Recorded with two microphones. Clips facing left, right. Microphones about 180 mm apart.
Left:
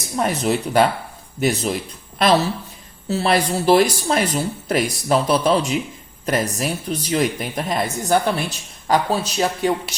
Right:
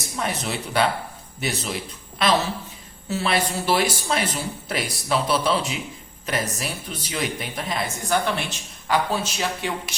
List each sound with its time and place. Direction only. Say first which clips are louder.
0.2 s a woman's voice: left 8 dB; 45° left (ahead or behind)